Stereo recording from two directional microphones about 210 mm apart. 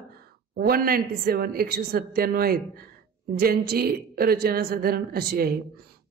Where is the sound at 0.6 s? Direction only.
45° right (ahead or behind).